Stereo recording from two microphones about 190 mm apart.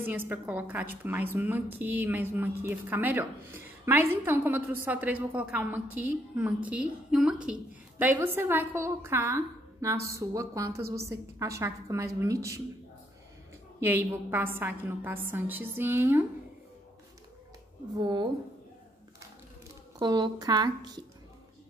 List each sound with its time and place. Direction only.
0.0 s a woman's voice: 10° right (ahead or behind)
13.7 s a woman's voice: 10° right (ahead or behind)
18.0 s a woman's voice: 25° right (ahead or behind)
20.0 s a woman's voice: 20° right (ahead or behind)